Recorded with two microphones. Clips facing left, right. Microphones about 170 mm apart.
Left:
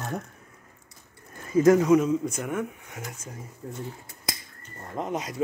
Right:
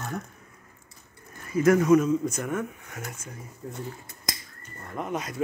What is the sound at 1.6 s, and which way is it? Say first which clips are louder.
Speech: left 1 dB; 15° left (ahead or behind).